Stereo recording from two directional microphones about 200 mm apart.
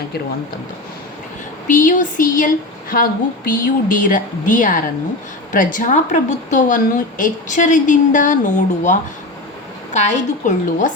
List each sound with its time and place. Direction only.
1.6 s a woman's voice: 40° left (ahead or behind)